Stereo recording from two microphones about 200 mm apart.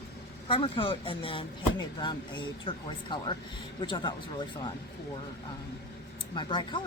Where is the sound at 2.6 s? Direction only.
25° left (ahead or behind).